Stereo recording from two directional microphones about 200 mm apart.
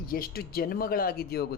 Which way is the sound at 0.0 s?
50° left (ahead or behind).